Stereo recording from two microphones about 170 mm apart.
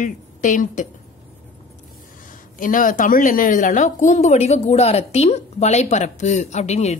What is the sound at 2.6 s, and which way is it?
Speech, 50° left (ahead or behind).